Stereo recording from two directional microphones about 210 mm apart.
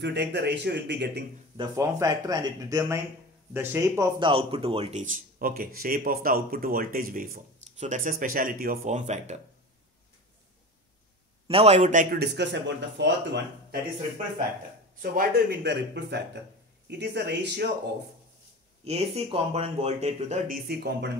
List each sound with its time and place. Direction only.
0.0 s speech: 55° right (ahead or behind)
1.6 s speech: 15° right (ahead or behind)
4.3 s speech: 25° right (ahead or behind)
11.4 s speech: 30° right (ahead or behind)
12.2 s speech: 55° right (ahead or behind)
15.0 s speech: 45° right (ahead or behind)
18.9 s speech: 30° right (ahead or behind); by 21.1 s 50° right (ahead or behind)